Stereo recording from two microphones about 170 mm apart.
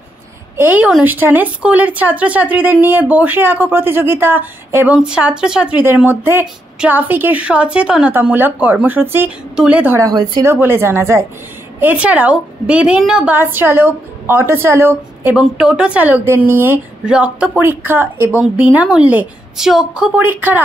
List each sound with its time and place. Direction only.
0.6 s a woman's voice: 10° right (ahead or behind)